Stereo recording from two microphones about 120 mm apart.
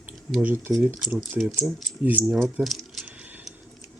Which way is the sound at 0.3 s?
15° right (ahead or behind).